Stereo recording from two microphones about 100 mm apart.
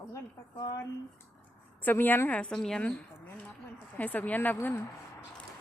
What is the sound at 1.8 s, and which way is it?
A woman's voice, 20° left (ahead or behind).